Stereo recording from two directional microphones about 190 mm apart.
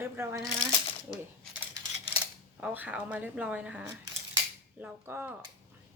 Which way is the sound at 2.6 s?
10° right (ahead or behind).